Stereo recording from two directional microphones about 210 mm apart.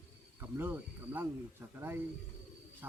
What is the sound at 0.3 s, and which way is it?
Speech, 10° right (ahead or behind).